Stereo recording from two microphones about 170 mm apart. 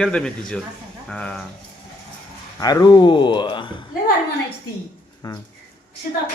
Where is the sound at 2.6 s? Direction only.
20° left (ahead or behind).